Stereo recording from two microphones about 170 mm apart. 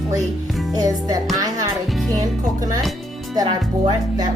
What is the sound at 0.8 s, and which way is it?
Music, 20° right (ahead or behind).